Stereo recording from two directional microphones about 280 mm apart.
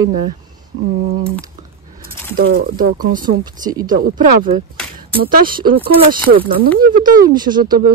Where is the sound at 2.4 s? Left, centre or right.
Right.